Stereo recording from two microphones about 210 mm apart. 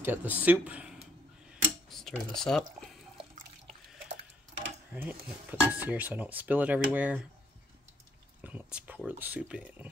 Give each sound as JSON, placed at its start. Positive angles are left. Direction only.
{"t": 0.0, "sound": "speech", "side_deg": -10}
{"t": 1.5, "sound": "a sound", "side_deg": 0}
{"t": 4.9, "sound": "speech", "side_deg": -10}
{"t": 8.4, "sound": "speech", "side_deg": -10}